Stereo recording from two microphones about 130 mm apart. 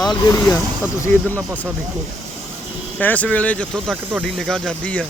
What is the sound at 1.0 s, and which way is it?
Speech, 15° left (ahead or behind).